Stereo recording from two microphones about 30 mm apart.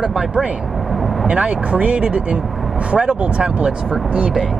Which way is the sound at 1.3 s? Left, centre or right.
Right.